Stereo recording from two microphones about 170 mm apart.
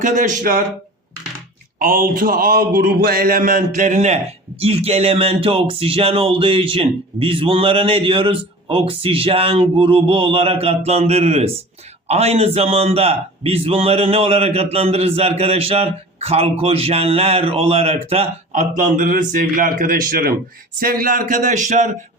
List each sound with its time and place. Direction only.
0.0 s speech: 50° right (ahead or behind)
1.8 s a man's voice: 55° right (ahead or behind)